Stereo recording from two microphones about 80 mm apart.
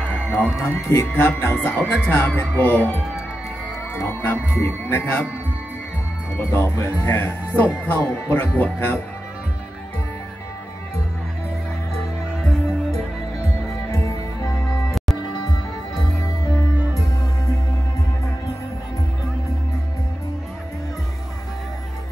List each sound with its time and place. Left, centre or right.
0.6 s speech: left
6.3 s speech: left
13.9 s music: left